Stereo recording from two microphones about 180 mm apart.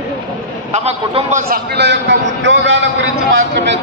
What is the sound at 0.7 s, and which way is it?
Speech, 35° right (ahead or behind).